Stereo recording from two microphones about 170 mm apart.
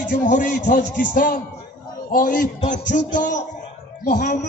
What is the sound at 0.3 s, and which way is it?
A man's voice, 50° left (ahead or behind).